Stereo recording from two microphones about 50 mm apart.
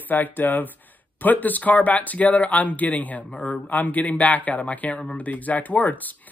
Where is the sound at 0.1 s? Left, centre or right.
Left.